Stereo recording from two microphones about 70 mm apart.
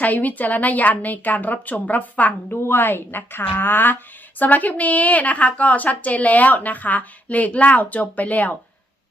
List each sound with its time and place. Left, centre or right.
0.0 s a woman's voice: left